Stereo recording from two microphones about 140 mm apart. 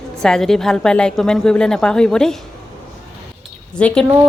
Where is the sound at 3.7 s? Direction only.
5° left (ahead or behind).